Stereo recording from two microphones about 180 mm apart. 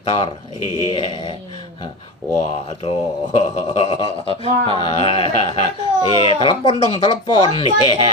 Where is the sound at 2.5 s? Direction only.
35° left (ahead or behind).